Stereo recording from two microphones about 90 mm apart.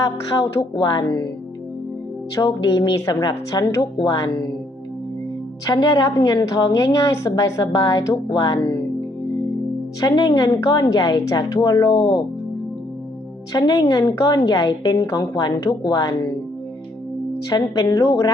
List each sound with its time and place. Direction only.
0.0 s a woman's voice: 55° left (ahead or behind)
2.3 s a woman's voice: 55° left (ahead or behind)
3.2 s a woman's voice: 45° left (ahead or behind)
5.6 s a woman's voice: 45° left (ahead or behind)
10.0 s a woman's voice: 50° left (ahead or behind)
13.5 s a woman's voice: 50° left (ahead or behind)
17.5 s a woman's voice: 50° left (ahead or behind)